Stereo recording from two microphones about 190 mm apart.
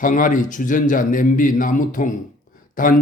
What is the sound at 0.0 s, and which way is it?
A man's voice, 45° left (ahead or behind).